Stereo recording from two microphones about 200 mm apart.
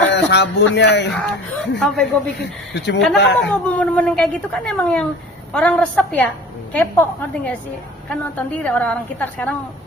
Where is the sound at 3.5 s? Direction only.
5° left (ahead or behind).